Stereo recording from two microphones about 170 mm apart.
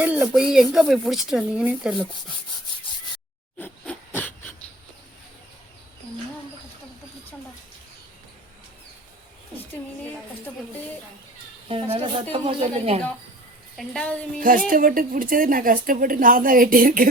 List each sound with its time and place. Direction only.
0.0 s speech: 10° right (ahead or behind)
3.6 s a sound: 10° left (ahead or behind)
11.7 s speech: 35° right (ahead or behind)
13.7 s speech: 5° left (ahead or behind)
14.3 s speech: 55° right (ahead or behind)